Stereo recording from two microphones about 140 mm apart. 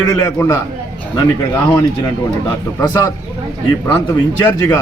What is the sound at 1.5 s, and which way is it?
A man's voice, 25° left (ahead or behind).